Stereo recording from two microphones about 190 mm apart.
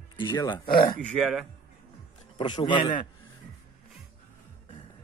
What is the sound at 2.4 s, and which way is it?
Speech, 25° left (ahead or behind).